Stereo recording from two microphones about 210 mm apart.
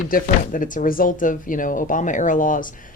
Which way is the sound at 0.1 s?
40° left (ahead or behind).